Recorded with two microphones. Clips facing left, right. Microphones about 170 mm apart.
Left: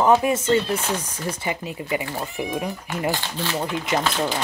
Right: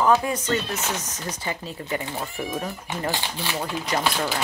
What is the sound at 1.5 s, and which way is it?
Speech, 10° left (ahead or behind).